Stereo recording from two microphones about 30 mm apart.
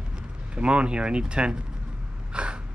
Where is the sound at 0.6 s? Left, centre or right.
Right.